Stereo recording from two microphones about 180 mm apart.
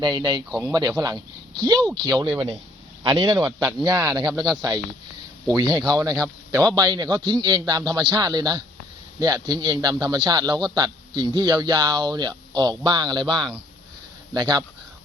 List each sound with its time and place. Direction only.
0.0 s a man's voice: 25° right (ahead or behind)
5.5 s a man's voice: 20° right (ahead or behind)